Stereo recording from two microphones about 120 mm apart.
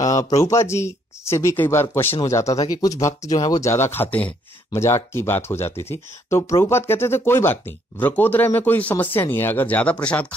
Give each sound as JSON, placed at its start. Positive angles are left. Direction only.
{"t": 0.0, "sound": "a sound", "side_deg": 25}
{"t": 0.4, "sound": "speech", "side_deg": 25}
{"t": 3.7, "sound": "speech", "side_deg": 20}